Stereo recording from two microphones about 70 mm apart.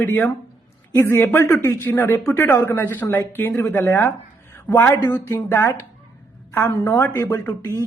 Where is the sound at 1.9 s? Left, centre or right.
Left.